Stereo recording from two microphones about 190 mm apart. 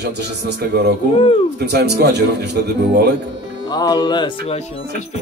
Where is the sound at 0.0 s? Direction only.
60° right (ahead or behind).